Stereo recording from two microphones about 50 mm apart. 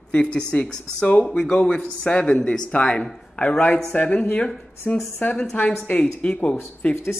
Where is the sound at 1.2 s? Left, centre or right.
Centre.